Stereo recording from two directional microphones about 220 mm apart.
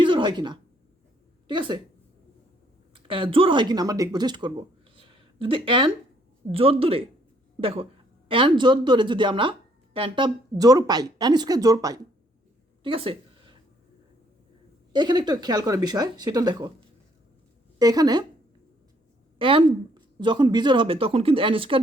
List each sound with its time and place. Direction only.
0.0 s a sound: 20° right (ahead or behind)
1.5 s speech: 20° right (ahead or behind)
2.9 s speech: 25° right (ahead or behind)
4.9 s a sound: 25° right (ahead or behind)
6.5 s speech: 25° right (ahead or behind)
12.8 s a sound: 25° right (ahead or behind)
14.9 s speech: 20° right (ahead or behind)
17.7 s speech: 15° right (ahead or behind)
19.4 s speech: 25° right (ahead or behind)